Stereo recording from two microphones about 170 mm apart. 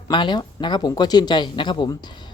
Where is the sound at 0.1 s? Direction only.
25° left (ahead or behind).